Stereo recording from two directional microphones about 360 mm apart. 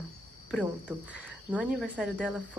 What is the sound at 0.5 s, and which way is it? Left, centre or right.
Speech, centre.